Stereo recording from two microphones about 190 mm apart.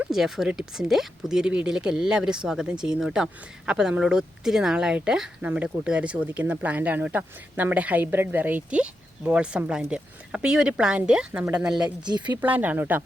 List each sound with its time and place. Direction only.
0.0 s speech: centre (ahead or behind)
12.0 s speech: 20° right (ahead or behind)
12.4 s speech: 10° right (ahead or behind)